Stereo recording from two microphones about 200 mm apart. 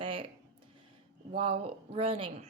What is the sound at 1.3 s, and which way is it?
Speech, 30° right (ahead or behind).